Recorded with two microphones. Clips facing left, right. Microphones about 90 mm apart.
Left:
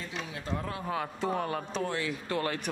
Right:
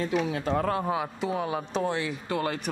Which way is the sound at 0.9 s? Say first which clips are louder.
Right 2 dB; 10° right (ahead or behind).